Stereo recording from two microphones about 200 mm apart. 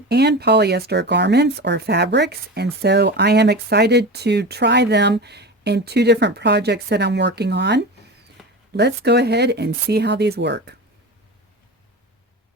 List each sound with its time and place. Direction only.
0.1 s speech: 55° right (ahead or behind)